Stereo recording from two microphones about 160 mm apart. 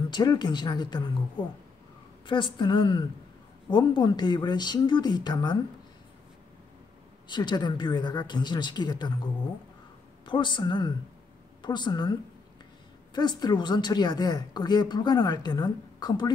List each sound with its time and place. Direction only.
0.1 s a woman's voice: 25° left (ahead or behind)
2.2 s a woman's voice: 30° left (ahead or behind)
7.2 s a woman's voice: 30° left (ahead or behind)
10.2 s a woman's voice: 30° left (ahead or behind)